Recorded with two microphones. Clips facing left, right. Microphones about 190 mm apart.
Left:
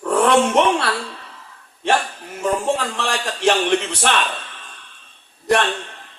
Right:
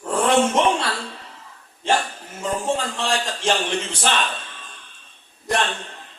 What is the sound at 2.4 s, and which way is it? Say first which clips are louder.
A man's voice: left 3 dB; 65° left (ahead or behind).